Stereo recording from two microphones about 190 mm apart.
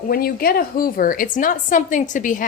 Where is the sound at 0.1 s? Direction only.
50° left (ahead or behind).